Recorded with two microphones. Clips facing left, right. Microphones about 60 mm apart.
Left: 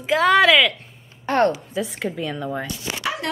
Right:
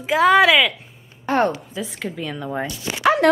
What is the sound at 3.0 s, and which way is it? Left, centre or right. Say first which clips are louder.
Dog: right 12 dB; right.